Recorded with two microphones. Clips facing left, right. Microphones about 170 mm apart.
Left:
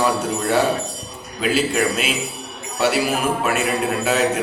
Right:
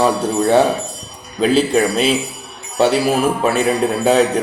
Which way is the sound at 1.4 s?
35° right (ahead or behind).